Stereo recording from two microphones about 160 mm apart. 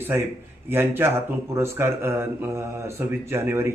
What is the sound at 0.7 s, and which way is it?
A man's voice, 15° right (ahead or behind).